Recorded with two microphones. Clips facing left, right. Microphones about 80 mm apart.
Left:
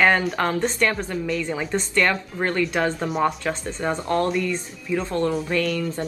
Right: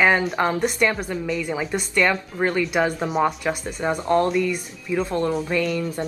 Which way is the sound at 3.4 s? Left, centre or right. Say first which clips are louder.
Right 1 dB; centre.